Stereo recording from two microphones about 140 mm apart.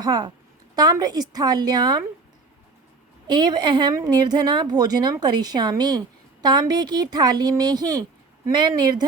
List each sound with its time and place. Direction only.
0.0 s a woman's voice: 30° right (ahead or behind)
3.2 s a woman's voice: 30° right (ahead or behind)